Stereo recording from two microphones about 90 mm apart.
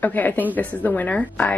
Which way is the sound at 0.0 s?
20° left (ahead or behind).